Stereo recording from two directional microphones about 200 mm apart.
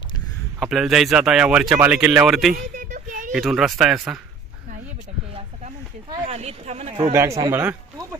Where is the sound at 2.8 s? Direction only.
40° right (ahead or behind).